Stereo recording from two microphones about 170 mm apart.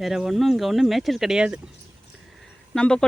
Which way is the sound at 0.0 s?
Centre (ahead or behind).